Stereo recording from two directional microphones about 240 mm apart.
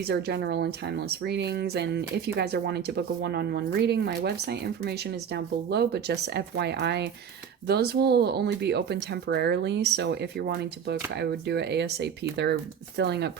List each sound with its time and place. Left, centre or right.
0.1 s speech: right